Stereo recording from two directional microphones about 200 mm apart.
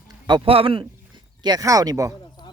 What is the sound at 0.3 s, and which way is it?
Speech, 25° right (ahead or behind).